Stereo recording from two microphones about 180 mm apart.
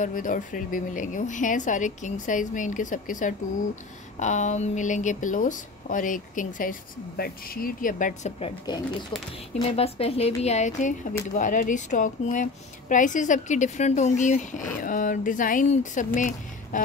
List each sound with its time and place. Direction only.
0.0 s speech: 50° left (ahead or behind)
8.4 s a woman's voice: 25° left (ahead or behind); by 16.8 s 45° left (ahead or behind)